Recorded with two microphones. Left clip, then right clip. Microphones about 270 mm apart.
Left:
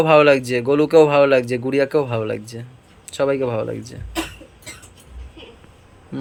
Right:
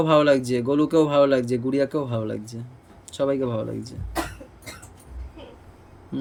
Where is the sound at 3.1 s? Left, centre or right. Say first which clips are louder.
Left 4 dB; centre.